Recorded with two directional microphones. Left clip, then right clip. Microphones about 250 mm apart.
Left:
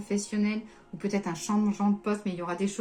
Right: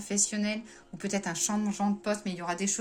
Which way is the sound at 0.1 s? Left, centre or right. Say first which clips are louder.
Even; right.